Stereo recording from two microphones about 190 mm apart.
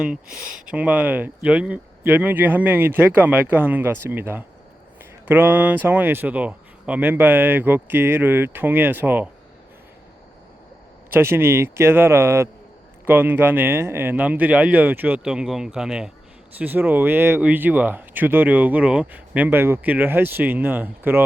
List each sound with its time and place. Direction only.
0.3 s speech: 45° right (ahead or behind)
0.6 s speech: 5° right (ahead or behind)
11.1 s speech: 10° right (ahead or behind)